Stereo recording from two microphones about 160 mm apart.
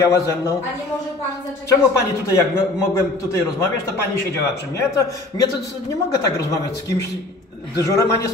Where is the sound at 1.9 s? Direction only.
15° left (ahead or behind).